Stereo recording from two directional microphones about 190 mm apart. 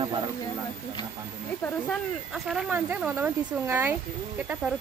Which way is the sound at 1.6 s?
Centre (ahead or behind).